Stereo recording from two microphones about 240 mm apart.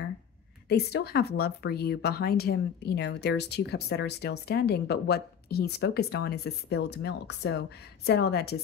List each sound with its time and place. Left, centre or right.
0.7 s speech: left